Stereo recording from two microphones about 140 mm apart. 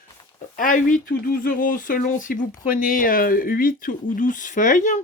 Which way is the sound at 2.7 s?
90° left.